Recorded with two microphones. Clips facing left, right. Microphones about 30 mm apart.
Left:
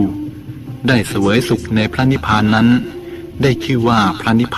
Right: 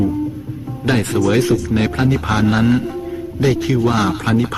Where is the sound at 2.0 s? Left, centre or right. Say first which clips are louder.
Left 2 dB; left.